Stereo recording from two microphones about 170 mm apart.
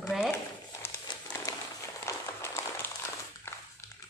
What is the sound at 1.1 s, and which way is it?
Crumpling, 25° left (ahead or behind).